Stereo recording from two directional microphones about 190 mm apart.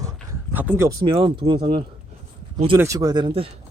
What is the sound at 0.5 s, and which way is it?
Speech, 10° right (ahead or behind).